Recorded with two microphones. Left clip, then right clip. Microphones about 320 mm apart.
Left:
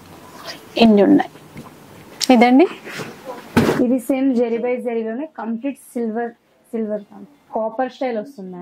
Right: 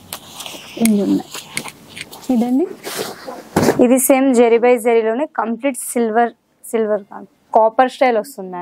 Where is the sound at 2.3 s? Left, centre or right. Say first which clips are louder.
Left 6 dB; centre.